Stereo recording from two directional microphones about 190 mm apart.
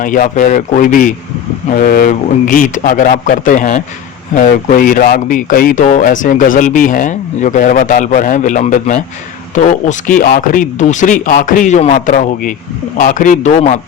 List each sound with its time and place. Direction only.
0.0 s speech: 45° left (ahead or behind)